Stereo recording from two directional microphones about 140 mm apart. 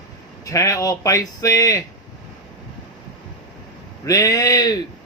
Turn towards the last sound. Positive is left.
turn(degrees=25)  # may be behind; listen again after turning